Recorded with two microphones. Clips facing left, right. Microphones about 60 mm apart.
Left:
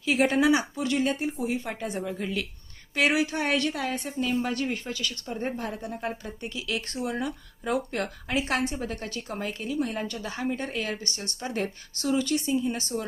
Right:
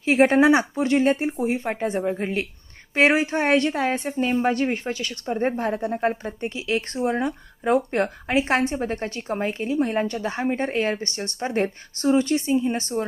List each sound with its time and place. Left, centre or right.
0.0 s speech: right